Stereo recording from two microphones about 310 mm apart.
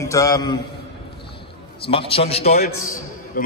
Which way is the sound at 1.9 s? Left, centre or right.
Centre.